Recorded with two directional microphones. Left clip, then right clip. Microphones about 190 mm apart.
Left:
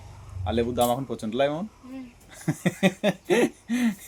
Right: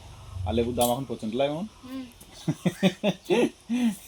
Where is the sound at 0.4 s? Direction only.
Centre (ahead or behind).